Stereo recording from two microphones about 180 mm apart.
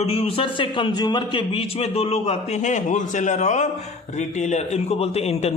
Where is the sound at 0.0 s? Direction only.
35° left (ahead or behind).